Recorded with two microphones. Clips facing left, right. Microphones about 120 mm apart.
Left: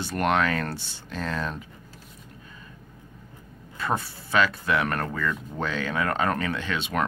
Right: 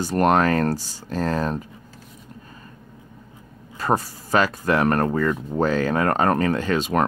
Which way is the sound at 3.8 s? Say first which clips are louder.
Right 6 dB; 40° right (ahead or behind).